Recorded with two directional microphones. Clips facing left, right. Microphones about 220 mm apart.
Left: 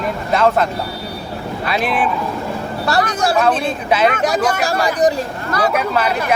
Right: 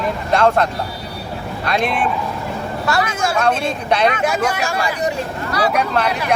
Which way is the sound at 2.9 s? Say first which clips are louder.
Left 3 dB; 35° left (ahead or behind).